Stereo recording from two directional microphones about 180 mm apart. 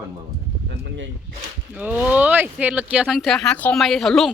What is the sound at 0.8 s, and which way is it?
Speech, 90° right.